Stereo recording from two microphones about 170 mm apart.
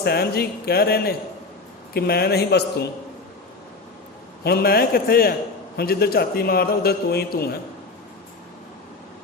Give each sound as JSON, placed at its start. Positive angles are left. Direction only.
{"t": 0.0, "sound": "speech", "side_deg": 70}
{"t": 4.4, "sound": "a man's voice", "side_deg": 65}